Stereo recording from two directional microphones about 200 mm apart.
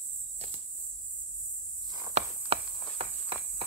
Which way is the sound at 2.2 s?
35° right (ahead or behind).